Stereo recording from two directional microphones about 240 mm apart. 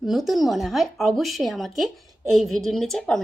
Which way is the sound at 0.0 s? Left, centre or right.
Centre.